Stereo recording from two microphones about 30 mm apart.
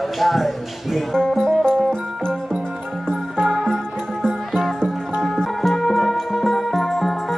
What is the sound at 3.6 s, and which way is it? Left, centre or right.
Music, left.